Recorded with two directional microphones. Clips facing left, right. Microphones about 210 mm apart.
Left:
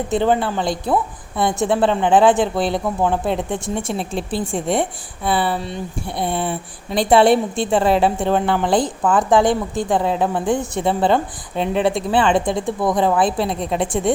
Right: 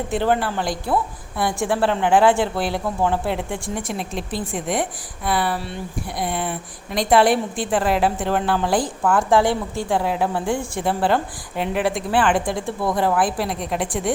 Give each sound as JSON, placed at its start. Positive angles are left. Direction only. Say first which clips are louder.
{"t": 0.1, "sound": "speech", "louder": "left 3 dB", "side_deg": 20}